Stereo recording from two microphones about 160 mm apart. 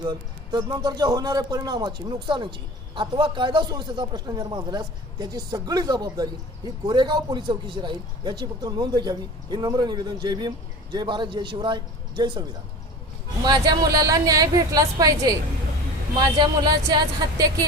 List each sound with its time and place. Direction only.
0.0 s a man's voice: 25° right (ahead or behind)
16.4 s a man's voice: 25° right (ahead or behind)